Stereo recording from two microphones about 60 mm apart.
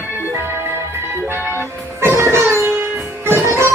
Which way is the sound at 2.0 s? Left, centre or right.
Right.